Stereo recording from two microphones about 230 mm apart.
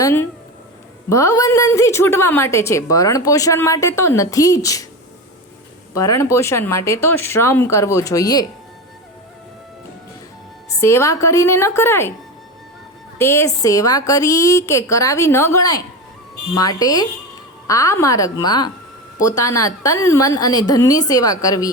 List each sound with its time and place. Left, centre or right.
0.0 s a woman's voice: centre
5.9 s a woman's voice: centre
10.8 s a woman's voice: centre
13.1 s a woman's voice: centre